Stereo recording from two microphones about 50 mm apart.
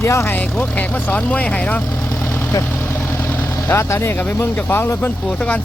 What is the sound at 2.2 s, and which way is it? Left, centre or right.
Vehicle, left.